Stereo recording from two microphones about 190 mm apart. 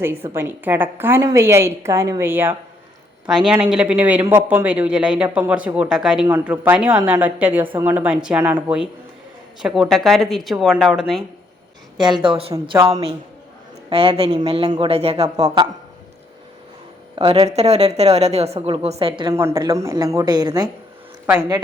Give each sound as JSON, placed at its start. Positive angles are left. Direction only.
{"t": 0.3, "sound": "speech", "side_deg": -10}
{"t": 11.9, "sound": "speech", "side_deg": -25}
{"t": 15.4, "sound": "speech", "side_deg": -20}
{"t": 17.2, "sound": "a woman's voice", "side_deg": -30}
{"t": 19.3, "sound": "speech", "side_deg": -15}
{"t": 21.2, "sound": "speech", "side_deg": -5}